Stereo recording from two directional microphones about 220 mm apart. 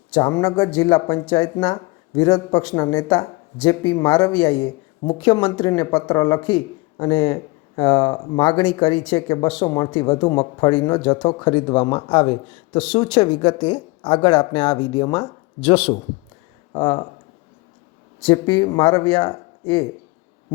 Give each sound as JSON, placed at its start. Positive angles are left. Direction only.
{"t": 0.1, "sound": "speech", "side_deg": 15}
{"t": 18.2, "sound": "speech", "side_deg": 20}